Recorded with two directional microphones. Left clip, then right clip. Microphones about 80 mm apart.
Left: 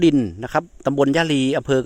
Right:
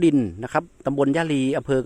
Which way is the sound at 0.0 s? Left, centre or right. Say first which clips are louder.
Left 2 dB; left.